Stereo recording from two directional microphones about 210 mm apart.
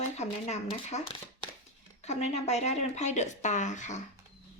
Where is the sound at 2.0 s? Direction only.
30° left (ahead or behind).